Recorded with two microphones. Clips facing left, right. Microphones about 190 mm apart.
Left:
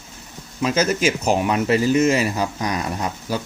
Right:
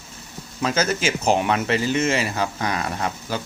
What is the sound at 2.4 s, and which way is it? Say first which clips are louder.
Speech: left 1 dB; 15° left (ahead or behind).